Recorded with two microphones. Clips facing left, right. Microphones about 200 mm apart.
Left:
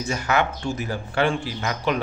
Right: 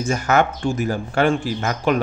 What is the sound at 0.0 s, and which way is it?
Speech, 50° right (ahead or behind).